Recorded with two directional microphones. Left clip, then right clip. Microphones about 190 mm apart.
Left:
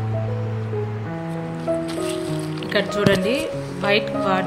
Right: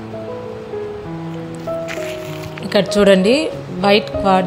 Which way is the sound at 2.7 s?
30° right (ahead or behind).